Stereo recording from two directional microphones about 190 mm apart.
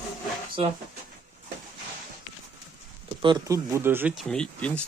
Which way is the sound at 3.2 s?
20° right (ahead or behind).